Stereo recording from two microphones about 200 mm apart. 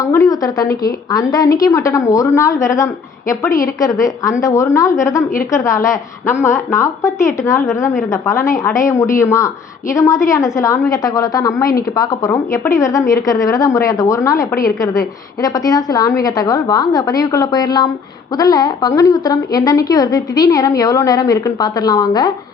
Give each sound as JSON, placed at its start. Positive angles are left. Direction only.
{"t": 0.0, "sound": "a woman's voice", "side_deg": 15}